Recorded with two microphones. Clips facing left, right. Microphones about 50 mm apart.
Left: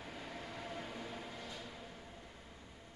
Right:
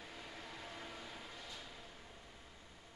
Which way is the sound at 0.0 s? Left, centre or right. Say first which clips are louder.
Left 4 dB; centre.